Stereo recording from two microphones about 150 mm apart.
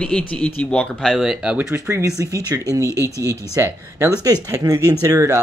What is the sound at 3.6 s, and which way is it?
Speech, 20° right (ahead or behind).